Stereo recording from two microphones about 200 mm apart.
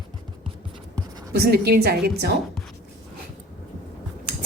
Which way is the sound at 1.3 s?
50° right (ahead or behind).